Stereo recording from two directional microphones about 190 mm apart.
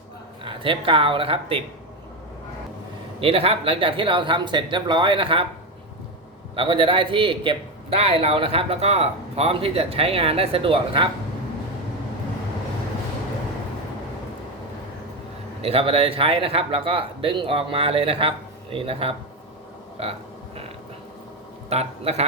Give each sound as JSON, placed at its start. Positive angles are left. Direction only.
{"t": 0.4, "sound": "a man's voice", "side_deg": -25}
{"t": 3.2, "sound": "a man's voice", "side_deg": -30}
{"t": 6.6, "sound": "a man's voice", "side_deg": -25}
{"t": 15.6, "sound": "a man's voice", "side_deg": -30}
{"t": 21.7, "sound": "a man's voice", "side_deg": -35}